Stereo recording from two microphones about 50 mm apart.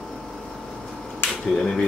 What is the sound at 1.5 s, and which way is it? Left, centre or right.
Speech, centre.